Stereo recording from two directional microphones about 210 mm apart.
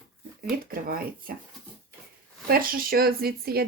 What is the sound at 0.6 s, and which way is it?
Speech, 45° right (ahead or behind).